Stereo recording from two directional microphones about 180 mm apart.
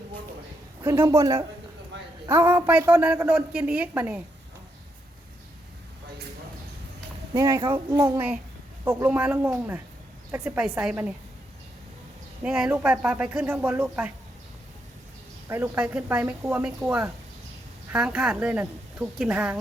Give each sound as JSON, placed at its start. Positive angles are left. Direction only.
{"t": 0.9, "sound": "a woman's voice", "side_deg": -15}
{"t": 7.3, "sound": "a woman's voice", "side_deg": -20}
{"t": 12.4, "sound": "speech", "side_deg": -5}
{"t": 15.4, "sound": "speech", "side_deg": -10}